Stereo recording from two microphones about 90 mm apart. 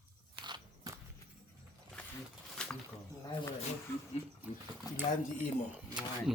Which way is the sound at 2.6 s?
10° left (ahead or behind).